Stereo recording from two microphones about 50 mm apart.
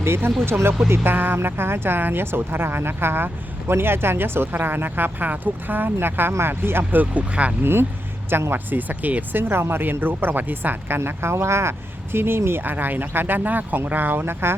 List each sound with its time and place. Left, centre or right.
0.0 s speech: right
7.0 s speech: right
7.6 s speech: right
8.5 s speech: right
9.4 s speech: right
12.1 s speech: right